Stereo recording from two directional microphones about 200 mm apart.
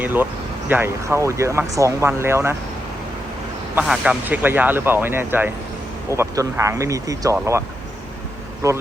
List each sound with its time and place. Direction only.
0.0 s speech: 10° right (ahead or behind)
3.8 s speech: 5° right (ahead or behind)